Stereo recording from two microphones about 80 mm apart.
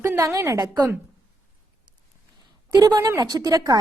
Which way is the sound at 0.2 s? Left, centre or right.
Right.